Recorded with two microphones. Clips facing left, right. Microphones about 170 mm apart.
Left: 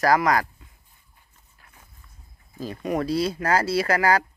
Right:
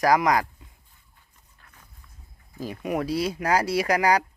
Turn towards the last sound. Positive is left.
turn(degrees=-15)  # may be behind; listen again after turning